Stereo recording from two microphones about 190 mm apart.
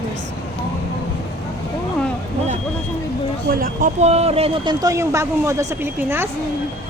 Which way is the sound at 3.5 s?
45° right (ahead or behind).